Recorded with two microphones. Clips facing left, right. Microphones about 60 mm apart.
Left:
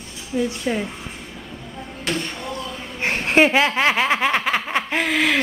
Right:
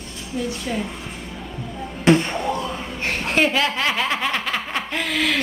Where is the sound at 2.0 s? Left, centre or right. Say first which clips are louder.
Right 10 dB; right.